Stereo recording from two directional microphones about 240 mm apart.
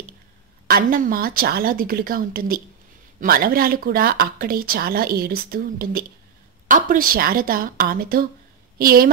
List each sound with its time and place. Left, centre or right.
0.7 s a woman's voice: right